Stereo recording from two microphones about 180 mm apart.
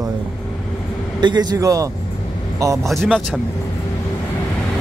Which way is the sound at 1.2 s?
25° right (ahead or behind).